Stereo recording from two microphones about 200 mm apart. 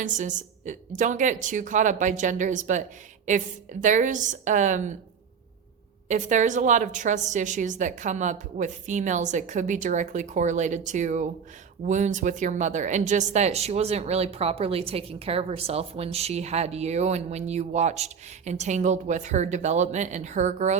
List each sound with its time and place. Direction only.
0.0 s speech: 40° right (ahead or behind)
6.1 s speech: 40° right (ahead or behind)